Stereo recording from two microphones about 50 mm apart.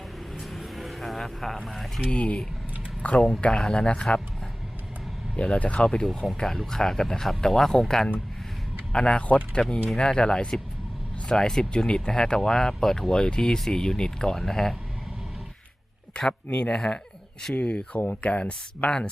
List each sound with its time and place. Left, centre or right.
0.3 s vehicle: centre
1.6 s speech: centre
2.0 s speech: left
5.4 s speech: left; by 14.8 s centre
16.1 s speech: centre